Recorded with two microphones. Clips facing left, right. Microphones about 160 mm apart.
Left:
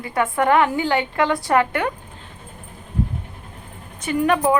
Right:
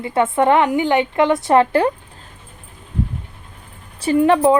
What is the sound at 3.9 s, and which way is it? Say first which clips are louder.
Speech: right 5 dB; 30° right (ahead or behind).